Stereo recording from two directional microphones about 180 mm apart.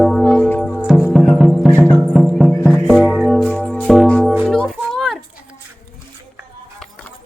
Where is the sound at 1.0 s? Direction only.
5° right (ahead or behind).